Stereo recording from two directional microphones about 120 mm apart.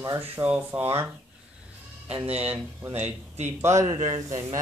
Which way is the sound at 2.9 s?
65° right (ahead or behind).